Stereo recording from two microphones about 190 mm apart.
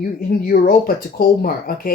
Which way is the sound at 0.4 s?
50° left (ahead or behind).